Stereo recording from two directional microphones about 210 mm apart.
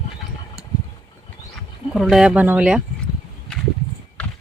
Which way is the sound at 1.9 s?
Centre (ahead or behind).